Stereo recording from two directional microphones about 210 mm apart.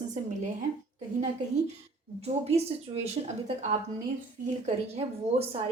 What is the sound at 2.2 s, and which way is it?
A woman's voice, 30° right (ahead or behind).